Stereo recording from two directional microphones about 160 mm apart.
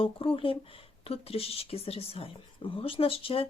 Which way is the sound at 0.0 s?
35° left (ahead or behind).